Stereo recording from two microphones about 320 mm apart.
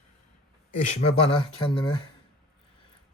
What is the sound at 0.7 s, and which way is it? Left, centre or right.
Speech, left.